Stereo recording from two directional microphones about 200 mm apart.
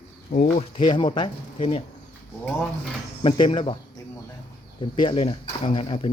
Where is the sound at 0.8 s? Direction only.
25° left (ahead or behind).